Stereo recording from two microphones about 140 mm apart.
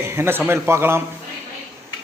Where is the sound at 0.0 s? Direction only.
20° right (ahead or behind).